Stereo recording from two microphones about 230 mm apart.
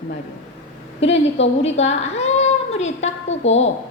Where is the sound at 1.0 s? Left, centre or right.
Left.